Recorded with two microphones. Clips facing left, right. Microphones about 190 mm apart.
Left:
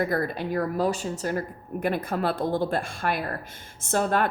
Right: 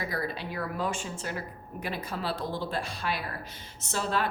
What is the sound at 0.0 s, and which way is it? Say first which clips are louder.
A woman's voice: left 7 dB; 50° left (ahead or behind).